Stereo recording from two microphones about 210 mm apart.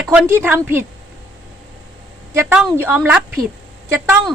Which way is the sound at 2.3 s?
5° right (ahead or behind).